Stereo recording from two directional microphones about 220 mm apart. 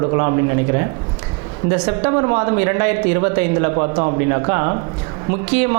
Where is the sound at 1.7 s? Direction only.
20° right (ahead or behind).